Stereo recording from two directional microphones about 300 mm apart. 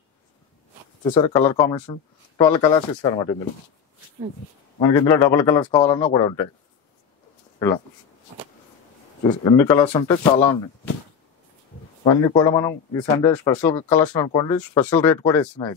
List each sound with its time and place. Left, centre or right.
1.0 s speech: centre
4.7 s speech: centre
7.5 s speech: centre
9.2 s speech: centre
12.0 s speech: centre